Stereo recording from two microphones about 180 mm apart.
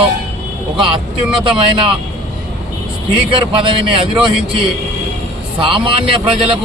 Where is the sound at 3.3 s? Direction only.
30° right (ahead or behind).